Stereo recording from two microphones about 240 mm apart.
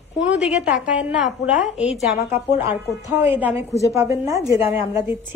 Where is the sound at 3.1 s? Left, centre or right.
Centre.